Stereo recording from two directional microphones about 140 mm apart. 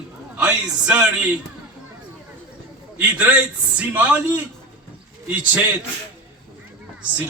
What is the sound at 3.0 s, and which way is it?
Speech, 10° right (ahead or behind).